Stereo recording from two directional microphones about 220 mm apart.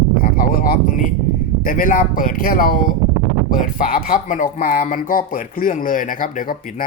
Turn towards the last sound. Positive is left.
turn(degrees=40)  # may be behind; listen again after turning